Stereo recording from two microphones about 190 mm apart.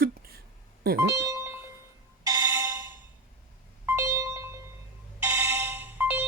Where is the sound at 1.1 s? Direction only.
15° right (ahead or behind).